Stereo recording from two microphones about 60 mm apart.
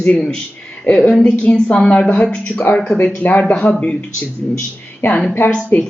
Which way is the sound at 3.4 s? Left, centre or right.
Centre.